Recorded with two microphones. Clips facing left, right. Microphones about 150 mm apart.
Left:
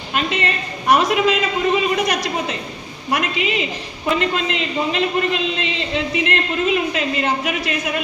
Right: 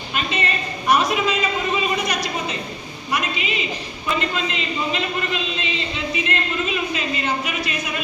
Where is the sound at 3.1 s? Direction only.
85° left.